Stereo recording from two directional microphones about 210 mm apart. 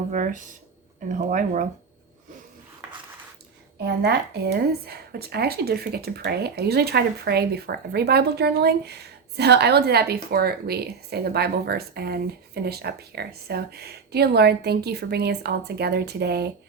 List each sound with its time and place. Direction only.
0.1 s speech: 40° right (ahead or behind)
3.8 s speech: 50° right (ahead or behind)